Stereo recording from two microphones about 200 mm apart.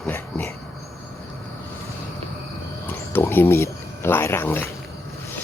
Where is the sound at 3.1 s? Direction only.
10° left (ahead or behind).